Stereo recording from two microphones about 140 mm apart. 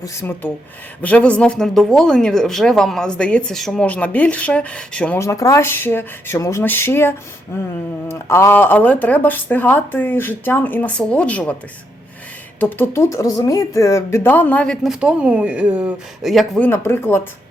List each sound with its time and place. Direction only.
0.0 s speech: 20° left (ahead or behind)
5.2 s speech: 25° left (ahead or behind)
12.5 s speech: 15° left (ahead or behind)
14.8 s speech: 10° right (ahead or behind)
16.6 s speech: 15° left (ahead or behind)